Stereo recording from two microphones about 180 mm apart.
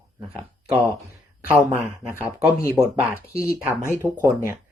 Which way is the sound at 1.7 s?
10° right (ahead or behind).